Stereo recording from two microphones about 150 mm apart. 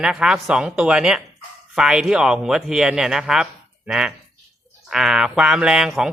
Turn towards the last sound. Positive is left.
turn(degrees=-5)  # may be behind; listen again after turning